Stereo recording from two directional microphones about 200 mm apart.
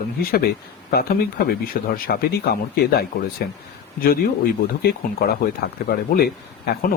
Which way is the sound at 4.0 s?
50° left (ahead or behind).